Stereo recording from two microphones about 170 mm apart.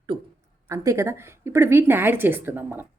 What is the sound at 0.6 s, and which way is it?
A woman's voice, 20° right (ahead or behind).